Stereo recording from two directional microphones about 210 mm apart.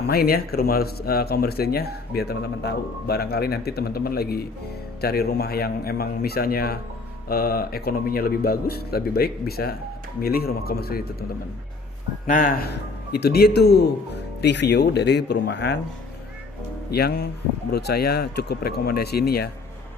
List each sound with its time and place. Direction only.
0.1 s speech: 45° left (ahead or behind)
12.3 s speech: 40° left (ahead or behind)
16.9 s speech: 50° left (ahead or behind)